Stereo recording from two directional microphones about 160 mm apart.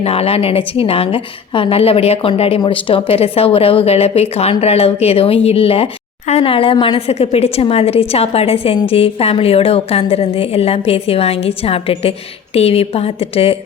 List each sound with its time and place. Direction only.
0.0 s speech: 40° left (ahead or behind)